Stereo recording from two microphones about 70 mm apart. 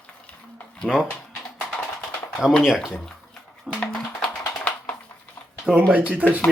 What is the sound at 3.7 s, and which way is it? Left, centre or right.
Music, centre.